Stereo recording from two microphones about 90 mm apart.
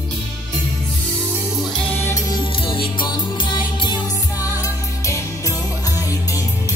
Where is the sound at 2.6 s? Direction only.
70° left (ahead or behind).